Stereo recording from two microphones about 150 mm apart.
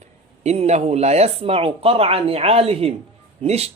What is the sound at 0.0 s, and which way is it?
Speech, 45° right (ahead or behind).